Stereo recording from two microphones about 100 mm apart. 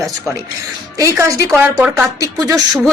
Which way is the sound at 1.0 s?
30° right (ahead or behind).